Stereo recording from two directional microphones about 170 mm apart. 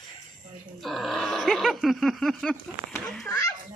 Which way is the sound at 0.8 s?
Centre (ahead or behind).